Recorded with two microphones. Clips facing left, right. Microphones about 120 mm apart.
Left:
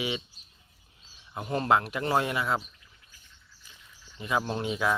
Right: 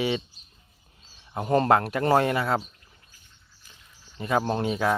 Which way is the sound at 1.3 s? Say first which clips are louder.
Right 5 dB; 55° right (ahead or behind).